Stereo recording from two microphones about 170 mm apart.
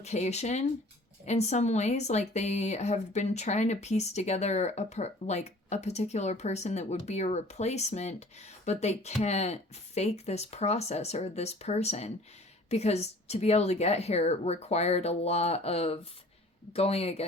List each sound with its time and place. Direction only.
0.0 s speech: 40° left (ahead or behind)